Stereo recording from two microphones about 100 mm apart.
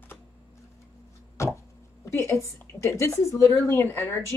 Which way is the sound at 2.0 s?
25° left (ahead or behind).